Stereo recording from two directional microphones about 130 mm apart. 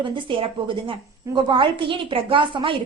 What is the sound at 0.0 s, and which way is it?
A woman's voice, 40° right (ahead or behind).